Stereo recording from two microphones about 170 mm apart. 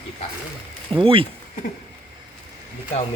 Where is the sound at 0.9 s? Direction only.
30° right (ahead or behind).